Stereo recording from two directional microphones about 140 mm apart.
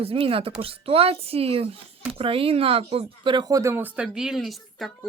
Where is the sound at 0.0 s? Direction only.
40° right (ahead or behind).